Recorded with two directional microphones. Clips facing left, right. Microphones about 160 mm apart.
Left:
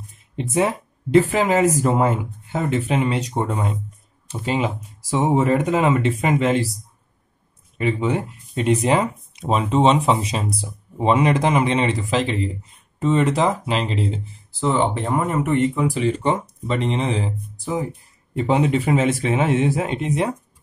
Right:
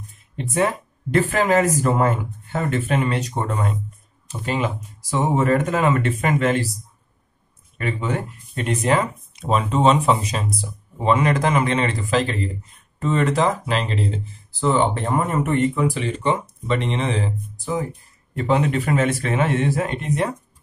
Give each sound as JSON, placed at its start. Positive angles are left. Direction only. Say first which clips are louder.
{"t": 0.4, "sound": "speech", "louder": "left 1 dB", "side_deg": 20}
{"t": 7.7, "sound": "speech", "louder": "left 4 dB", "side_deg": 15}
{"t": 15.7, "sound": "speech", "louder": "even", "side_deg": 25}
{"t": 16.2, "sound": "speech", "louder": "left 1 dB", "side_deg": 35}
{"t": 18.3, "sound": "speech", "louder": "left 1 dB", "side_deg": 20}